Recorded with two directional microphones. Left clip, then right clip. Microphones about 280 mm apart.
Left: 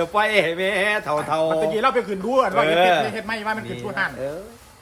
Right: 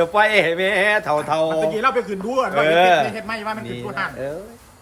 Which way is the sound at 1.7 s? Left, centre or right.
Left.